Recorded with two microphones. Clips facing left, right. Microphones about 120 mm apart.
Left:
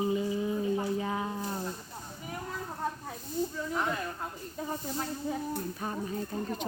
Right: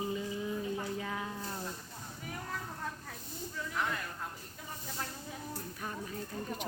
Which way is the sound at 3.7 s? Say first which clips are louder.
Left 1 dB; 25° left (ahead or behind).